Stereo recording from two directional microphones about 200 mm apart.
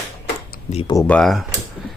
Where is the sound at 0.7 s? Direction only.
30° left (ahead or behind).